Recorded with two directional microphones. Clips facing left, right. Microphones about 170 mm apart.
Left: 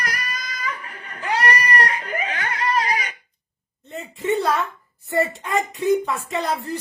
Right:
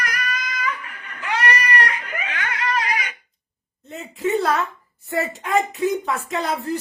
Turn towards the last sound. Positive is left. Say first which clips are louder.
# even
turn(degrees=0)  # may be behind; listen again after turning